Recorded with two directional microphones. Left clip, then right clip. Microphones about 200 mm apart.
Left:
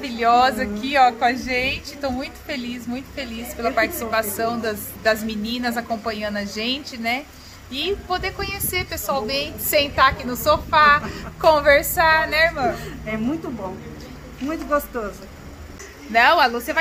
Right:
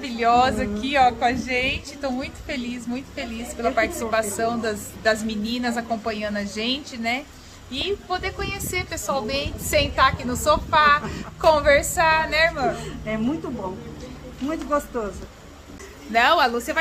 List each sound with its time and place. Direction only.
0.0 s a woman's voice: 5° left (ahead or behind)
12.7 s a woman's voice: 15° right (ahead or behind)
14.5 s speech: 20° right (ahead or behind)
16.1 s a woman's voice: centre (ahead or behind)